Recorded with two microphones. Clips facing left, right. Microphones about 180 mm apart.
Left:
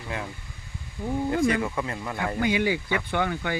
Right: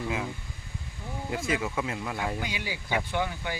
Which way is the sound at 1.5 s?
5° right (ahead or behind).